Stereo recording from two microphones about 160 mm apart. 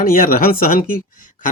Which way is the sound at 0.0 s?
65° left (ahead or behind).